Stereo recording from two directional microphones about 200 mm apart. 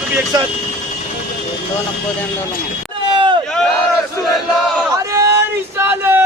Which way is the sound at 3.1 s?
25° right (ahead or behind).